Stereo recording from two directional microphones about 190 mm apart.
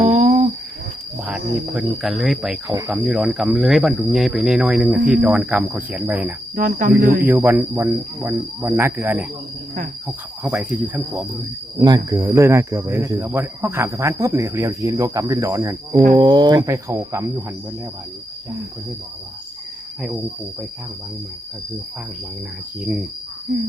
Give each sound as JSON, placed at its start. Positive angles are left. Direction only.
{"t": 0.0, "sound": "a sound", "side_deg": -40}
{"t": 1.2, "sound": "speech", "side_deg": -5}
{"t": 6.6, "sound": "cricket", "side_deg": -45}
{"t": 7.3, "sound": "speech", "side_deg": -10}
{"t": 11.8, "sound": "speech", "side_deg": -20}
{"t": 20.0, "sound": "speech", "side_deg": -5}
{"t": 22.8, "sound": "speech", "side_deg": -10}